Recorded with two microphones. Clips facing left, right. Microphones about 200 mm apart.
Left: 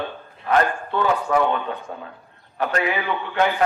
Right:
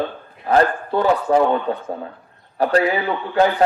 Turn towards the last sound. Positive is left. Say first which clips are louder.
# right 4 dB
turn(degrees=-35)  # may be behind; listen again after turning